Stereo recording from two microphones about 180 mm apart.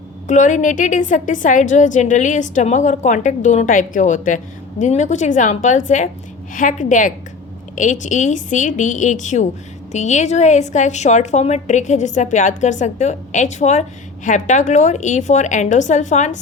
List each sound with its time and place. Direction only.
0.3 s a woman's voice: 45° left (ahead or behind)